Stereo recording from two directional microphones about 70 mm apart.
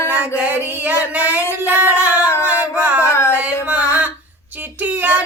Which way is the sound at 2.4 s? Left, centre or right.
Right.